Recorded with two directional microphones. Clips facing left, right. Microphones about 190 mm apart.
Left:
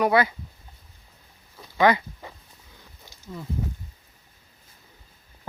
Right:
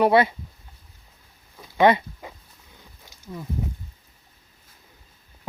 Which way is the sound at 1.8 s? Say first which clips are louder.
Right 2 dB; 25° right (ahead or behind).